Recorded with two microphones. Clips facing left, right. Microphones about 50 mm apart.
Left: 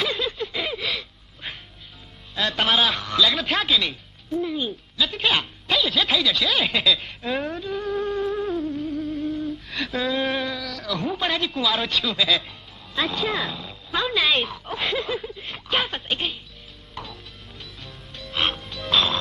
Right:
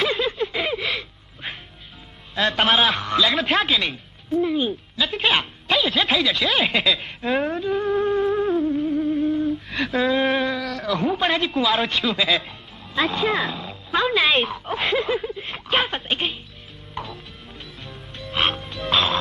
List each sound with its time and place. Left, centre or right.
0.0 s a sound: centre
2.3 s a man's voice: centre
2.6 s speech: centre
4.5 s speech: centre
7.6 s music: centre
9.9 s a sound: centre
10.9 s a man's voice: centre; by 17.1 s right
17.6 s music: centre